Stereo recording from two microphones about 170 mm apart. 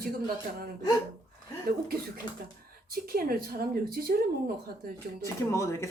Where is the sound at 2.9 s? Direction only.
60° right (ahead or behind).